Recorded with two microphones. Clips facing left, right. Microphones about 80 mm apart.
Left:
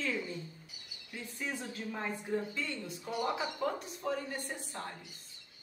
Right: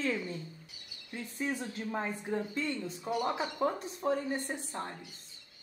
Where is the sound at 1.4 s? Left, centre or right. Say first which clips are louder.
Right 4 dB; right.